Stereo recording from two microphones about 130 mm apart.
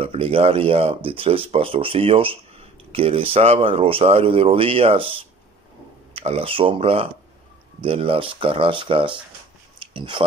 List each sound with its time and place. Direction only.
0.0 s speech: 45° right (ahead or behind)